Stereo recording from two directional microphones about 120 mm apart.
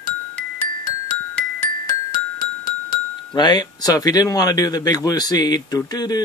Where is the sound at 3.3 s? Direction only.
35° left (ahead or behind).